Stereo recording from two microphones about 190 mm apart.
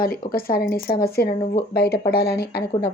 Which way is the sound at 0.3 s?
50° left (ahead or behind).